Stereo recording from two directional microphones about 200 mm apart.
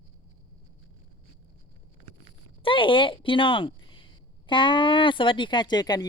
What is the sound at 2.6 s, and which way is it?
Speech, 25° left (ahead or behind).